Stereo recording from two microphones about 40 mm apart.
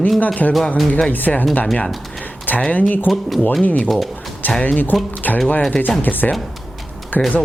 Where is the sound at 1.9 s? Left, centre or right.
Centre.